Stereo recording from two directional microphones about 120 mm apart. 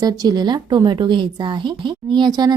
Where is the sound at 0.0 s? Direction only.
35° right (ahead or behind).